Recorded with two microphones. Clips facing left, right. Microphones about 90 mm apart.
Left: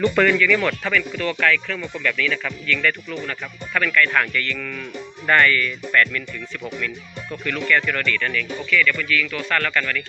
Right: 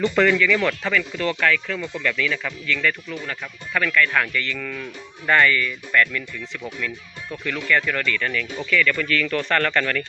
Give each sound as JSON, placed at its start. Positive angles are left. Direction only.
{"t": 0.2, "sound": "speech", "side_deg": -15}
{"t": 7.4, "sound": "speech", "side_deg": -20}